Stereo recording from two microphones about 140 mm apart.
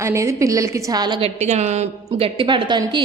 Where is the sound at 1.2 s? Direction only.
55° right (ahead or behind); by 3.0 s 35° right (ahead or behind).